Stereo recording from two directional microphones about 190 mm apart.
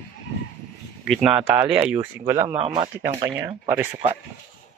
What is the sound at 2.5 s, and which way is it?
Speech, 30° right (ahead or behind).